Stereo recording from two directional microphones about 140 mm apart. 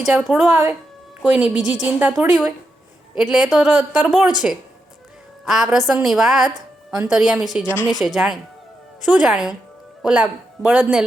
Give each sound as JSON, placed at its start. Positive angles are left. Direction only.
{"t": 0.0, "sound": "a woman's voice", "side_deg": -5}
{"t": 5.5, "sound": "a woman's voice", "side_deg": -5}